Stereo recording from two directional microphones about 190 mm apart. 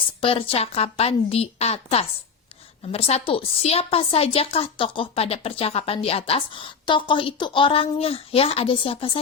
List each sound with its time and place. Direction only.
0.2 s a woman's voice: 30° left (ahead or behind)